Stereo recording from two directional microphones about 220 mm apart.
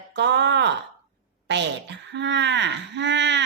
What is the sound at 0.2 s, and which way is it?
Speech, 55° right (ahead or behind).